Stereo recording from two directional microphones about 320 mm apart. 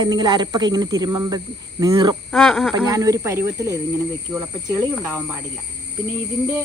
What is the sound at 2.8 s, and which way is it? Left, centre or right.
Speech, centre.